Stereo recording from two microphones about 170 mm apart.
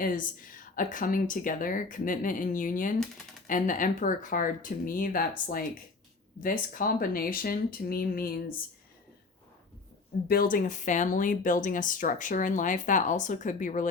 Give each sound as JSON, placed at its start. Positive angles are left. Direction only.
{"t": 0.0, "sound": "speech", "side_deg": 55}
{"t": 6.4, "sound": "speech", "side_deg": 55}
{"t": 10.2, "sound": "speech", "side_deg": 60}